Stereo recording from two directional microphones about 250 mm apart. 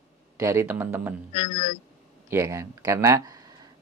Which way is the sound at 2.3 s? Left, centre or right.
Centre.